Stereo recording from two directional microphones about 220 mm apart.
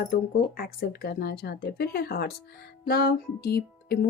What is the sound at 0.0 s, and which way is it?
A woman's voice, 40° left (ahead or behind).